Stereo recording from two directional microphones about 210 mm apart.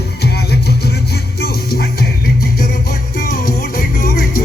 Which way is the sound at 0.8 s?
50° left (ahead or behind).